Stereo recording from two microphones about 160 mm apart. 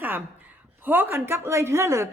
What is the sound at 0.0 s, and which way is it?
A woman's voice, 10° right (ahead or behind).